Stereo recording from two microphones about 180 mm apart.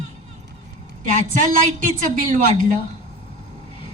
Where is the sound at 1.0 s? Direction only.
45° right (ahead or behind).